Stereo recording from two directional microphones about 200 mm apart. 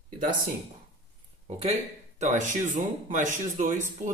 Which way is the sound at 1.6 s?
35° right (ahead or behind).